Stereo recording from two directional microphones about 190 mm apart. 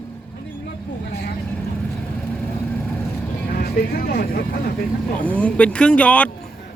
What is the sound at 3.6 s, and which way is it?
Speech, 55° left (ahead or behind).